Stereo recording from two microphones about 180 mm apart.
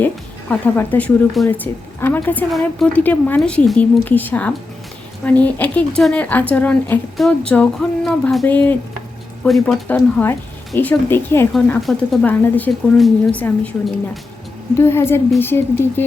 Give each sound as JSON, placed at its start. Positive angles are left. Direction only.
{"t": 0.0, "sound": "speech", "side_deg": 10}
{"t": 11.5, "sound": "speech", "side_deg": 0}
{"t": 14.8, "sound": "speech", "side_deg": 15}